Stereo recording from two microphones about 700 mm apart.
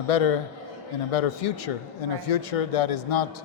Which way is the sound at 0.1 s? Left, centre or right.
Left.